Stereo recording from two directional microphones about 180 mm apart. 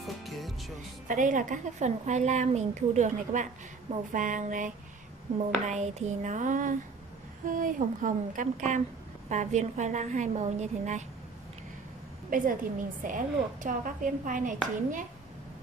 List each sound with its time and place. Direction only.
0.0 s music: centre (ahead or behind)
1.0 s a woman's voice: 45° right (ahead or behind)
12.3 s a woman's voice: 50° right (ahead or behind)